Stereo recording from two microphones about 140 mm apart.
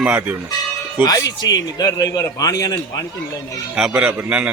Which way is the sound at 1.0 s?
25° left (ahead or behind).